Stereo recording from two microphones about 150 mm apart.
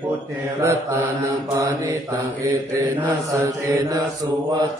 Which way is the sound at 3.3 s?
20° right (ahead or behind).